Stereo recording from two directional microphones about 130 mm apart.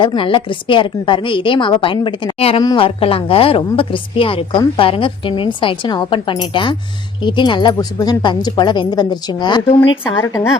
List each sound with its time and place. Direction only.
0.0 s a woman's voice: 40° left (ahead or behind)